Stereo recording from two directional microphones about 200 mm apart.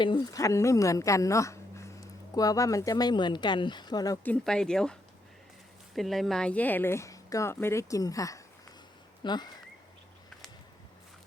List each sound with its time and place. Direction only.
0.0 s speech: 20° left (ahead or behind)